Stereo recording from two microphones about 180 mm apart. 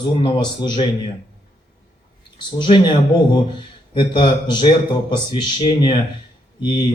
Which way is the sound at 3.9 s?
25° left (ahead or behind).